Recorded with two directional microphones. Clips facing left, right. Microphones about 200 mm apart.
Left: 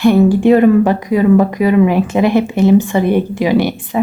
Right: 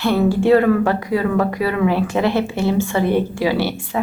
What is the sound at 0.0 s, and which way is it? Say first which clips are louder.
Speech: left 7 dB; 15° left (ahead or behind).